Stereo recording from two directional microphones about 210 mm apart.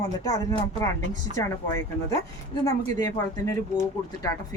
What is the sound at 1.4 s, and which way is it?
Speech, 15° left (ahead or behind).